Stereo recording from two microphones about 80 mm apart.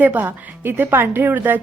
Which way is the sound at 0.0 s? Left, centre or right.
Right.